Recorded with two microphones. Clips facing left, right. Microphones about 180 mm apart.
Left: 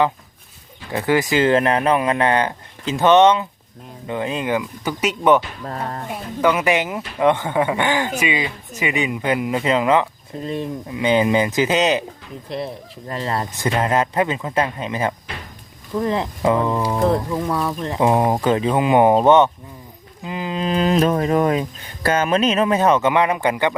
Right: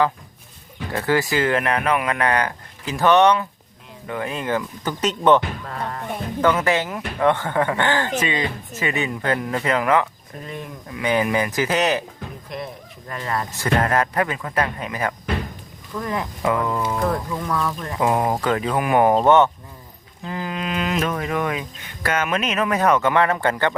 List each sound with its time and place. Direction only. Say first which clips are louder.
0.9 s speech: left 3 dB; 20° left (ahead or behind)
5.6 s music: left 2 dB; 35° left (ahead or behind)
6.1 s speech: left 1 dB; 15° left (ahead or behind)
12.5 s speech: left 7 dB; 30° left (ahead or behind)
13.6 s speech: left 1 dB; 20° left (ahead or behind)